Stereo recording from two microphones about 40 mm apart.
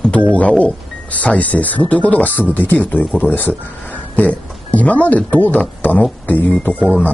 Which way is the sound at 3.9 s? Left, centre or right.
Left.